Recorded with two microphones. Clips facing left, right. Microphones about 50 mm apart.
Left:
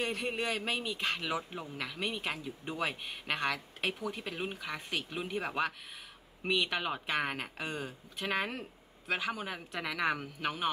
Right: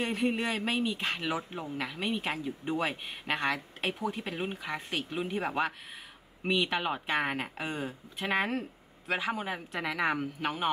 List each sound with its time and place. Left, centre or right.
0.0 s speech: centre